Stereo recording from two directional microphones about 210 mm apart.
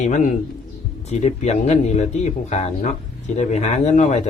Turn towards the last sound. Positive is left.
turn(degrees=35)  # may be behind; listen again after turning